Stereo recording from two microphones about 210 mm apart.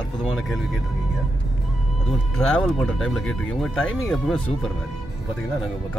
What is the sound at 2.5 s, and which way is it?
Speech, centre (ahead or behind).